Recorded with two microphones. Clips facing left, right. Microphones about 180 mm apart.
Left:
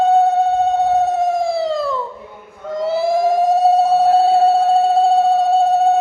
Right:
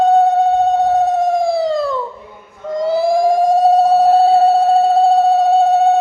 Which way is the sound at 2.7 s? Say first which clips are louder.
Right 2 dB; 5° left (ahead or behind).